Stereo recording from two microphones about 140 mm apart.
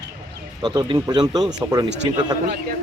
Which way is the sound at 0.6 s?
30° right (ahead or behind).